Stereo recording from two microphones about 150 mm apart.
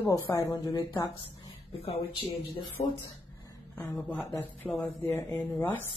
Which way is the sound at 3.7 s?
15° left (ahead or behind).